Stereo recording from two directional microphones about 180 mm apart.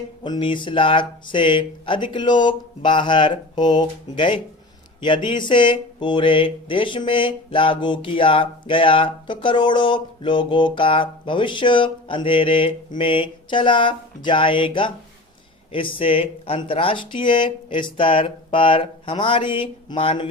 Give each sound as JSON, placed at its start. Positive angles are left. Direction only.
{"t": 0.2, "sound": "speech", "side_deg": 25}